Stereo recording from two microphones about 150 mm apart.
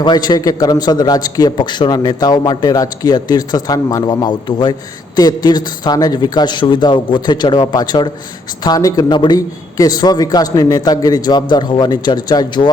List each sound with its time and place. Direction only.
0.0 s a man's voice: 30° left (ahead or behind)